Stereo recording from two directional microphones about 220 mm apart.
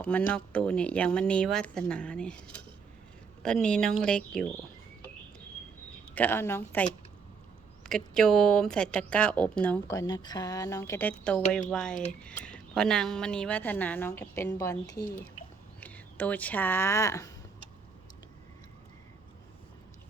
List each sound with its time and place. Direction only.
0.0 s speech: 5° left (ahead or behind)
6.1 s a woman's voice: 10° left (ahead or behind)
7.9 s a woman's voice: 5° left (ahead or behind)
15.0 s speech: 35° left (ahead or behind)
15.8 s speech: 5° left (ahead or behind)